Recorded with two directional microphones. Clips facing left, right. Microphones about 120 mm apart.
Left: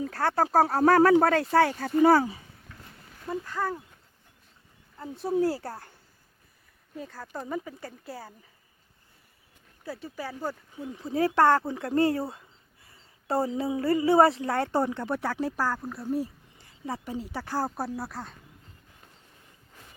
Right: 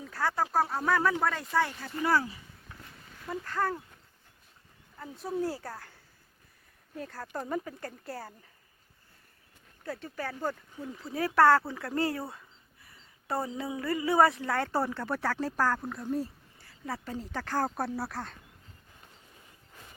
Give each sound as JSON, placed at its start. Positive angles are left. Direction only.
{"t": 0.0, "sound": "speech", "side_deg": 60}
{"t": 0.6, "sound": "speech", "side_deg": 80}
{"t": 3.2, "sound": "speech", "side_deg": 10}
{"t": 5.4, "sound": "speech", "side_deg": 70}
{"t": 5.6, "sound": "speech", "side_deg": 30}
{"t": 6.9, "sound": "speech", "side_deg": 0}
{"t": 9.8, "sound": "speech", "side_deg": 5}
{"t": 10.9, "sound": "a woman's voice", "side_deg": 25}